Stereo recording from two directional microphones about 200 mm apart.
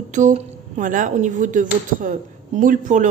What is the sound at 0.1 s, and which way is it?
A woman's voice, 40° right (ahead or behind).